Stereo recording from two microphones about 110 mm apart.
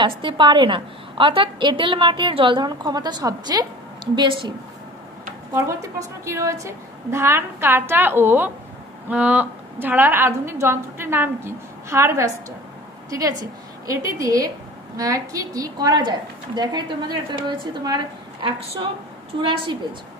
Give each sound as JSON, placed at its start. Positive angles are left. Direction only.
{"t": 0.0, "sound": "a woman's voice", "side_deg": -50}
{"t": 5.5, "sound": "a woman's voice", "side_deg": -30}
{"t": 13.1, "sound": "a woman's voice", "side_deg": -35}